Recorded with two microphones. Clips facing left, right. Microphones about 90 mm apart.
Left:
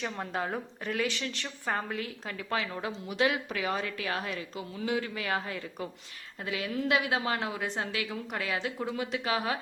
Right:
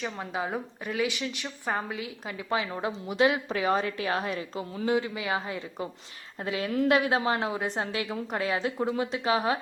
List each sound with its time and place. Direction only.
0.0 s a woman's voice: 5° right (ahead or behind); by 4.9 s 35° right (ahead or behind)
4.9 s a woman's voice: 20° right (ahead or behind)
6.4 s a woman's voice: 35° right (ahead or behind)
7.3 s a woman's voice: 25° right (ahead or behind)